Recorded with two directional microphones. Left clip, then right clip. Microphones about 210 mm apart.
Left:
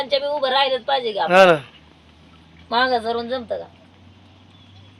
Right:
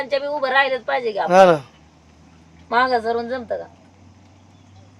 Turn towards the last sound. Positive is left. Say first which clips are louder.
# even
turn(degrees=-5)  # may be behind; listen again after turning